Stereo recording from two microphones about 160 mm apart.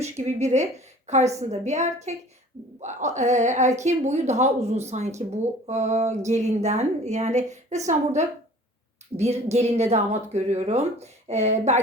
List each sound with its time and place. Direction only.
0.0 s a woman's voice: 45° right (ahead or behind)